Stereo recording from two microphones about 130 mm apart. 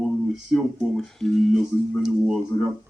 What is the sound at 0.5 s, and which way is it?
Speech, 5° left (ahead or behind).